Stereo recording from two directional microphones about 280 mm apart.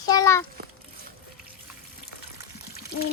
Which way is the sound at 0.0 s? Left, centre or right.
Centre.